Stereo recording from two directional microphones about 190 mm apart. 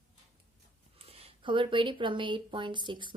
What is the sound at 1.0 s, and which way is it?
Speech, 30° right (ahead or behind).